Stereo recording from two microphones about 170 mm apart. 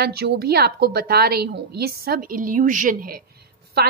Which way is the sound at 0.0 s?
70° right (ahead or behind).